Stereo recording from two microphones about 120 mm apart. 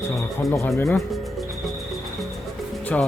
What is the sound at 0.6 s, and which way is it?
Speech, 15° left (ahead or behind).